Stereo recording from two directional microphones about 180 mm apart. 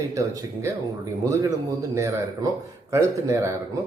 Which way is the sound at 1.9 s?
15° right (ahead or behind).